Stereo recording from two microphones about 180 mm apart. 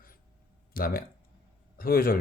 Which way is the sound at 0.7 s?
55° left (ahead or behind).